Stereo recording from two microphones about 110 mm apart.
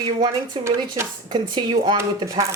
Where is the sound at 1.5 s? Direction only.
45° right (ahead or behind).